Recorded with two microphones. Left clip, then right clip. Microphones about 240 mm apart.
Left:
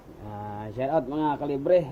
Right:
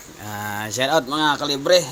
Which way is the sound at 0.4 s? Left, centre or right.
Right.